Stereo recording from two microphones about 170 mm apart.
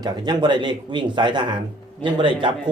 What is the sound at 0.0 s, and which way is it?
Speech, 25° right (ahead or behind).